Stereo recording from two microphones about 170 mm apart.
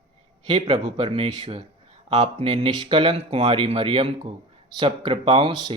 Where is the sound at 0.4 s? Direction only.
35° right (ahead or behind).